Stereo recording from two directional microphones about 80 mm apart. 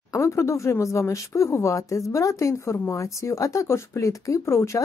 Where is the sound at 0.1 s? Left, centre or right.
Left.